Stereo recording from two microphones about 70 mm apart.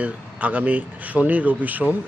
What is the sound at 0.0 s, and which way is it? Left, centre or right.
Speech, right.